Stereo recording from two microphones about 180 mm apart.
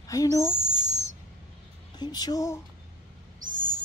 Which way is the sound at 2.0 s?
20° left (ahead or behind).